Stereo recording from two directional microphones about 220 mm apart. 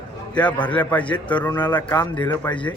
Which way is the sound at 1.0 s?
20° left (ahead or behind).